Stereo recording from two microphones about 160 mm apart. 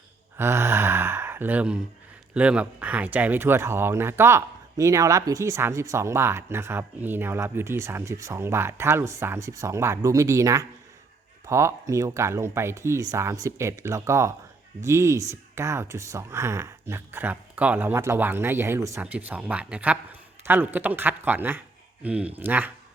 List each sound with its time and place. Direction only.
0.3 s a man's voice: 15° right (ahead or behind)